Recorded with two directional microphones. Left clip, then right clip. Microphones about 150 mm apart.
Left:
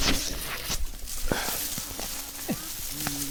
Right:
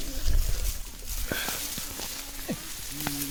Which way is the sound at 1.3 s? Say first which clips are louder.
Left 2 dB; 35° left (ahead or behind).